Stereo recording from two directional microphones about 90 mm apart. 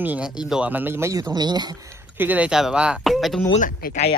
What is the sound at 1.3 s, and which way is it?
Speech, 50° right (ahead or behind).